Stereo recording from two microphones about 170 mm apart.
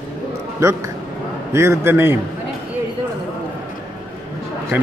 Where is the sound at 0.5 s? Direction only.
15° right (ahead or behind).